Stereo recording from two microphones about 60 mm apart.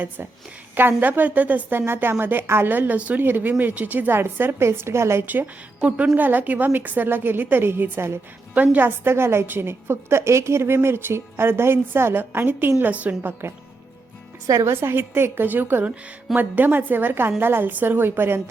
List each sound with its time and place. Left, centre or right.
0.8 s a woman's voice: right
1.8 s a woman's voice: right
5.2 s a woman's voice: right
8.5 s a woman's voice: right
14.6 s a woman's voice: right